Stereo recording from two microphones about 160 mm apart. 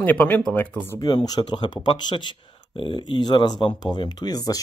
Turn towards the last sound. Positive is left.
turn(degrees=25)  # may be behind; listen again after turning